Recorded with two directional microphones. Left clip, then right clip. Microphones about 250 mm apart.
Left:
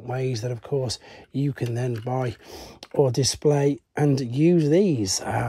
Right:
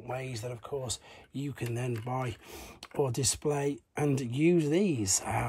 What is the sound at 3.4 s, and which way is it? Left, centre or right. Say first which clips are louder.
Speech: left 13 dB; left.